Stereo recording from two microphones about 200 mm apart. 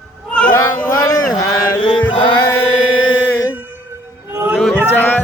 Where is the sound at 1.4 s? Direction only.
15° left (ahead or behind).